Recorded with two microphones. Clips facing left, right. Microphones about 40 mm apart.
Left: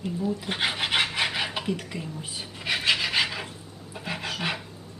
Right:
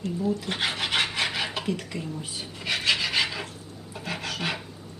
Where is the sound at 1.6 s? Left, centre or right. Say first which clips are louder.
Even; centre.